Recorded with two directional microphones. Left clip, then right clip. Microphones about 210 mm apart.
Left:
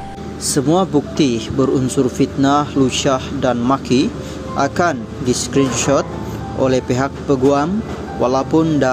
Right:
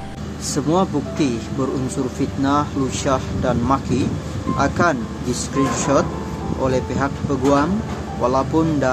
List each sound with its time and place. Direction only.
0.6 s speech: 20° left (ahead or behind)